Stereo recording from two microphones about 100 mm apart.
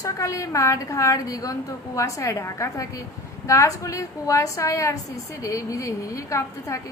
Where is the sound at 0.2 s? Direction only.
35° left (ahead or behind).